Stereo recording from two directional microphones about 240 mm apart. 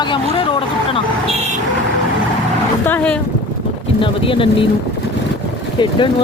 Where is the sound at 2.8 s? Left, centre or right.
Centre.